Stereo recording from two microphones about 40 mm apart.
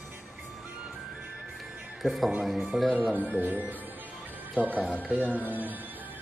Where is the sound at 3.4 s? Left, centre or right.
Right.